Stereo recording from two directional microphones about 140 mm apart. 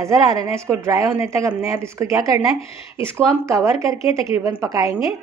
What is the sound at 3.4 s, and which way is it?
A woman's voice, 20° right (ahead or behind).